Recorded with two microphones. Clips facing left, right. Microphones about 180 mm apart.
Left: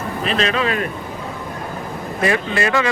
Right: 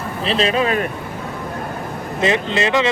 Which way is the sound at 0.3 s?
30° right (ahead or behind).